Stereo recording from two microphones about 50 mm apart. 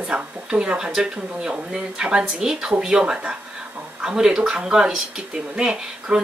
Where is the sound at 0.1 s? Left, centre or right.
Centre.